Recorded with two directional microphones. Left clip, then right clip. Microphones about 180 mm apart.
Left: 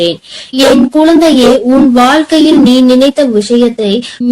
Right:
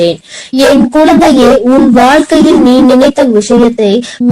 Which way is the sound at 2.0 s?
30° right (ahead or behind).